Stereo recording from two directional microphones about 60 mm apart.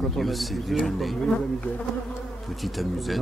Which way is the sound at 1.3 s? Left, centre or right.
Left.